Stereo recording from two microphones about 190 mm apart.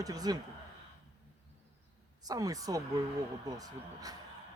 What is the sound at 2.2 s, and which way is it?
Speech, 20° right (ahead or behind).